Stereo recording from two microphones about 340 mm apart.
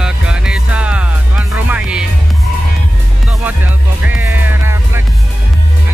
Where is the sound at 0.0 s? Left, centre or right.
Centre.